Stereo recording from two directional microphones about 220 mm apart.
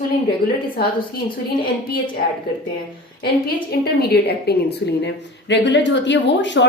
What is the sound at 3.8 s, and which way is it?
A woman's voice, 45° left (ahead or behind).